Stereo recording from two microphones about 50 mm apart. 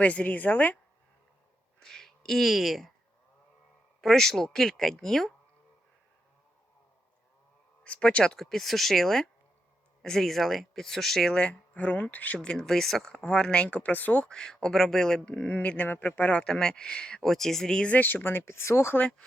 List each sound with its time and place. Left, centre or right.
0.0 s a woman's voice: left
1.8 s speech: centre
4.0 s speech: centre
7.9 s speech: left
8.4 s speech: centre
11.3 s speech: left
12.4 s speech: centre
13.2 s speech: left
14.3 s speech: centre
15.2 s speech: left
16.4 s speech: centre
17.2 s speech: centre
17.9 s speech: left